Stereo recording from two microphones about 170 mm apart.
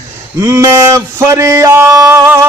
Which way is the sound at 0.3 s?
20° right (ahead or behind).